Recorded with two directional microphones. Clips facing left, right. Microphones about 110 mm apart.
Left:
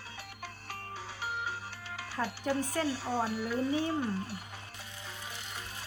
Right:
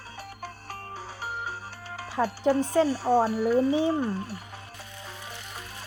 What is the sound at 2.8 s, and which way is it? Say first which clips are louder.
Speech: right 9 dB; 45° right (ahead or behind).